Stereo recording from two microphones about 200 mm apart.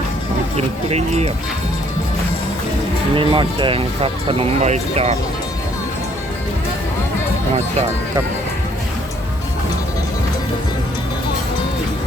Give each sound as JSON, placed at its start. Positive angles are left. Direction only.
{"t": 0.5, "sound": "speech", "side_deg": -30}
{"t": 3.2, "sound": "speech", "side_deg": -25}